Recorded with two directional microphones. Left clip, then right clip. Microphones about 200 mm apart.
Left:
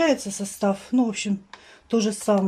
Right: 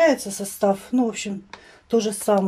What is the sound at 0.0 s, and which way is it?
A woman's voice, centre (ahead or behind).